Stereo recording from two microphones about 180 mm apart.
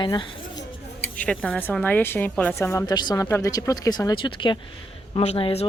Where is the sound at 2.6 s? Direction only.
15° left (ahead or behind).